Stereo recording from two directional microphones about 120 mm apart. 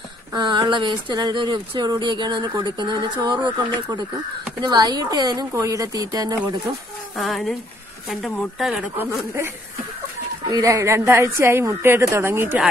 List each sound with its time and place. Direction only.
0.3 s a woman's voice: 40° right (ahead or behind)
7.2 s speech: centre (ahead or behind)
8.9 s a woman's voice: 20° right (ahead or behind)
10.5 s a woman's voice: 25° right (ahead or behind)